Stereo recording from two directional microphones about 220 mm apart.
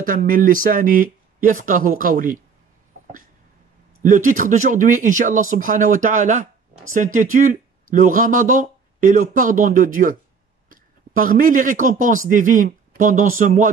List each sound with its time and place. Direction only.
0.0 s speech: 40° right (ahead or behind)
4.0 s speech: 35° right (ahead or behind)